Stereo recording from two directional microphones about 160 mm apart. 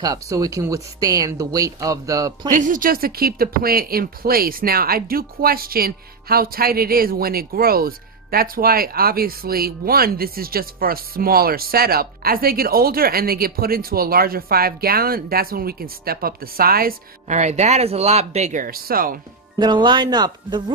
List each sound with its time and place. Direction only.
0.0 s speech: 20° right (ahead or behind)
2.5 s speech: 55° right (ahead or behind)
17.3 s speech: 45° right (ahead or behind); by 19.1 s 65° right (ahead or behind)
19.6 s speech: 30° right (ahead or behind)